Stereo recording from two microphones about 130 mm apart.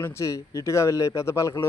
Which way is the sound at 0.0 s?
20° left (ahead or behind).